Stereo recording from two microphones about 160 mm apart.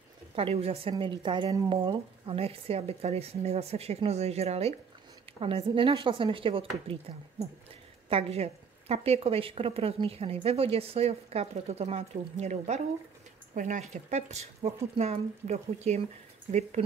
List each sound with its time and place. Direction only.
0.4 s a woman's voice: 35° right (ahead or behind)